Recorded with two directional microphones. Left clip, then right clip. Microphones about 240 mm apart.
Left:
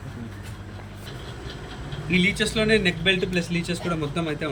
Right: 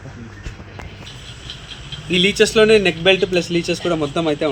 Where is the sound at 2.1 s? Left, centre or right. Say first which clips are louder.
Right 9 dB; centre.